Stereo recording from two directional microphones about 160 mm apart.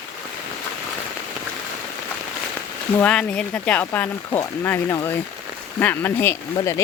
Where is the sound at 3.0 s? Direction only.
10° left (ahead or behind).